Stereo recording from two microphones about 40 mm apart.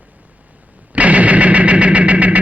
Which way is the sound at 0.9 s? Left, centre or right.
Right.